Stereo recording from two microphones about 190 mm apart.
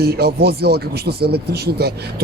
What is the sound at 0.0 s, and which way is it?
Speech, 55° right (ahead or behind).